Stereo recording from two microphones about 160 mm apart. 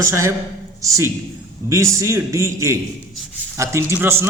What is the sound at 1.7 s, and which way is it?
A man's voice, 20° right (ahead or behind).